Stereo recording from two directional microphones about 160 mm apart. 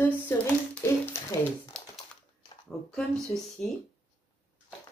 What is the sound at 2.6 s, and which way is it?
Speech, 5° left (ahead or behind).